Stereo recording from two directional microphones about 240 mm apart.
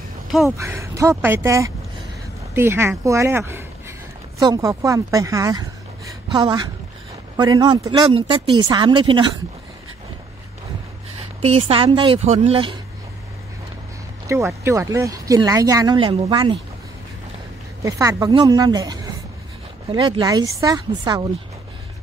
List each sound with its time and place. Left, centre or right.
0.5 s speech: centre
11.4 s speech: right
14.2 s speech: centre
17.8 s speech: centre